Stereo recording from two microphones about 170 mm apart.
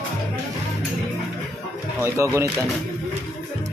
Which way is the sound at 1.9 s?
15° right (ahead or behind).